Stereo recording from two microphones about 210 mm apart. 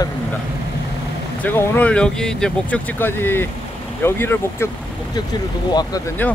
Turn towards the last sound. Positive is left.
turn(degrees=15)  # may be behind; listen again after turning